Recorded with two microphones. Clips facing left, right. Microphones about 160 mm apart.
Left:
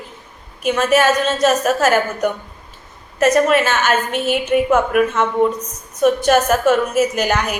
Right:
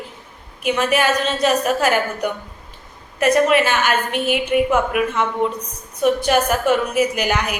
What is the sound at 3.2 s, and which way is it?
Speech, 45° left (ahead or behind).